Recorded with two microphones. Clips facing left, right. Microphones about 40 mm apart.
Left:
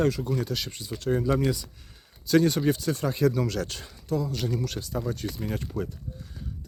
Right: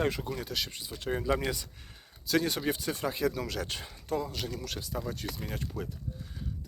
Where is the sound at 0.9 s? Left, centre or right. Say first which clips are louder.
Left 5 dB; centre.